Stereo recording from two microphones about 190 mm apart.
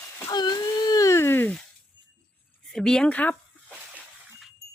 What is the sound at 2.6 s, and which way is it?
Speech, centre (ahead or behind).